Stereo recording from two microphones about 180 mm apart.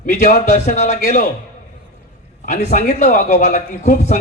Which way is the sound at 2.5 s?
45° left (ahead or behind).